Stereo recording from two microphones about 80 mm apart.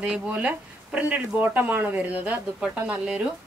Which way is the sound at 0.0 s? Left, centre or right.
Centre.